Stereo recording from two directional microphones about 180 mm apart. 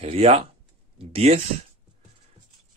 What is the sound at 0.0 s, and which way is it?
Speech, 35° right (ahead or behind).